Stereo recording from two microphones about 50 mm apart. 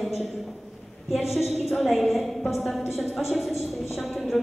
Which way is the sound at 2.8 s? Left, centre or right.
Left.